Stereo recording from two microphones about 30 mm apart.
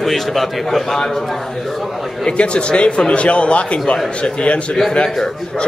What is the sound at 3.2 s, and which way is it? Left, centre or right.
Speech, left.